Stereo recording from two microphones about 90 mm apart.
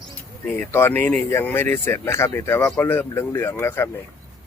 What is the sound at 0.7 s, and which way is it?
Speech, 25° left (ahead or behind).